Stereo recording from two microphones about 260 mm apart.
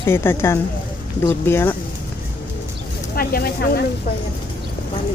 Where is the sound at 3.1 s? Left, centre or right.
Left.